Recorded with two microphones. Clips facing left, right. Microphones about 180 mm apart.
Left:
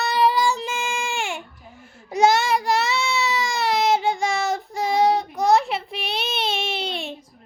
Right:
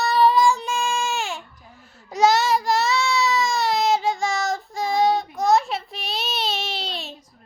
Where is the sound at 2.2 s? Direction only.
55° left (ahead or behind).